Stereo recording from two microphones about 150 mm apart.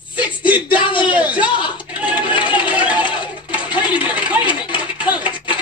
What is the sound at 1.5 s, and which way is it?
Speech, 35° left (ahead or behind).